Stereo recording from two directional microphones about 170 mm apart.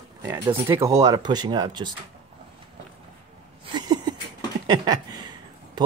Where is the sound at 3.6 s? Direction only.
25° right (ahead or behind).